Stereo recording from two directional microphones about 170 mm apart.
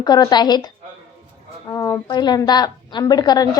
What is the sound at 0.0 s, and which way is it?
A woman's voice, 25° left (ahead or behind).